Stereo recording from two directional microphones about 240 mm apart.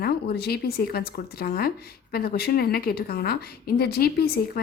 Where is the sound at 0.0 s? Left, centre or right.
Left.